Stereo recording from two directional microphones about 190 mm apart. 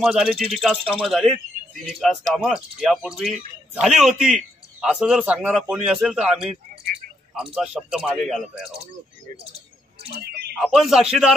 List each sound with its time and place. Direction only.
0.0 s speech: centre (ahead or behind)
10.1 s speech: 60° right (ahead or behind)
10.6 s speech: centre (ahead or behind)